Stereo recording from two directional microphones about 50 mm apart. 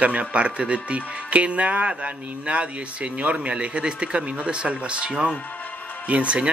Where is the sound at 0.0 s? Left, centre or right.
Right.